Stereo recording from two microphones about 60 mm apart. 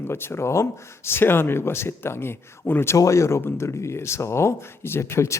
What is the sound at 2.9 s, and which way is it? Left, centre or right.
Speech, left.